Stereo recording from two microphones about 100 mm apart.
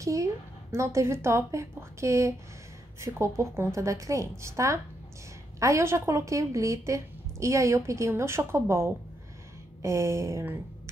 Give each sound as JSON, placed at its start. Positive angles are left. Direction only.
{"t": 0.0, "sound": "a woman's voice", "side_deg": -30}